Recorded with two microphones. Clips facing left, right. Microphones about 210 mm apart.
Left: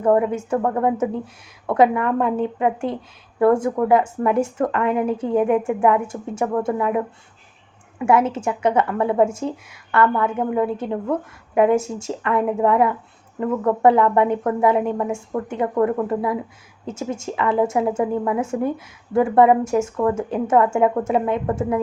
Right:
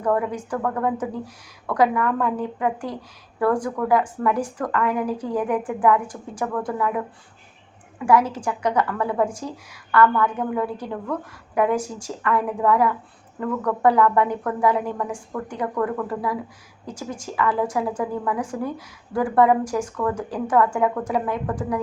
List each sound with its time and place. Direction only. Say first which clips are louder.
0.0 s a woman's voice: left 5 dB; 25° left (ahead or behind)